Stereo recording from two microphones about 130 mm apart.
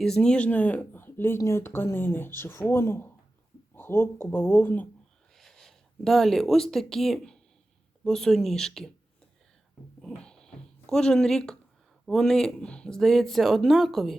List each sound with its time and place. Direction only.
0.0 s speech: 5° left (ahead or behind)
5.3 s speech: centre (ahead or behind)
10.0 s a sound: 5° left (ahead or behind)
12.0 s speech: 5° left (ahead or behind)